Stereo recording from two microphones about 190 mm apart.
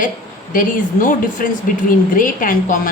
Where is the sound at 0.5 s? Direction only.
45° left (ahead or behind).